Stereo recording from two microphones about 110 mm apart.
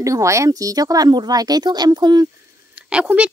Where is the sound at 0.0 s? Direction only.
30° right (ahead or behind).